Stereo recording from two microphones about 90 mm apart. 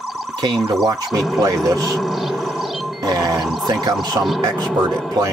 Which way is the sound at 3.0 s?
45° right (ahead or behind).